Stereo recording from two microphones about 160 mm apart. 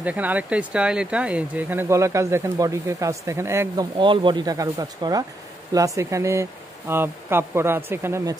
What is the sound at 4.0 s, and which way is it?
Speech, 30° right (ahead or behind).